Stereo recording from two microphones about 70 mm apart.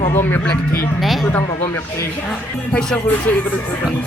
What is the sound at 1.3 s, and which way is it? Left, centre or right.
Speech, left.